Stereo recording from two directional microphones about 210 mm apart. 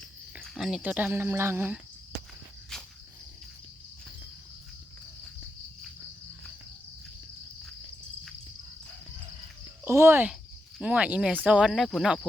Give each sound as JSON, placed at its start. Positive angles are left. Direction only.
{"t": 0.3, "sound": "speech", "side_deg": 0}
{"t": 9.8, "sound": "speech", "side_deg": -10}